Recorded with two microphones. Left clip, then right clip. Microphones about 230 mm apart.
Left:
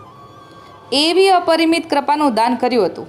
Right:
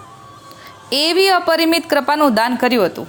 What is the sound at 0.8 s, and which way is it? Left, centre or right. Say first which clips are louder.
A woman's voice: left 1 dB; right.